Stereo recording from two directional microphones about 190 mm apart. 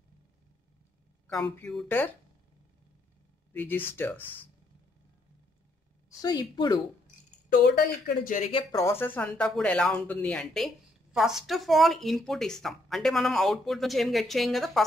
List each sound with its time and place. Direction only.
1.2 s speech: 5° left (ahead or behind)
3.5 s speech: 10° left (ahead or behind)
6.0 s a woman's voice: 20° left (ahead or behind)
7.4 s a woman's voice: 45° left (ahead or behind)
8.5 s speech: 25° left (ahead or behind)
8.8 s speech: 10° left (ahead or behind)